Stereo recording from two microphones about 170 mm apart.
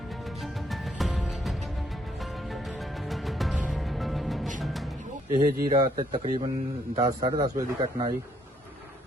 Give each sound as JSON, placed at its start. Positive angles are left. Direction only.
{"t": 0.1, "sound": "music", "side_deg": 0}
{"t": 5.3, "sound": "speech", "side_deg": -55}
{"t": 5.6, "sound": "speech", "side_deg": -25}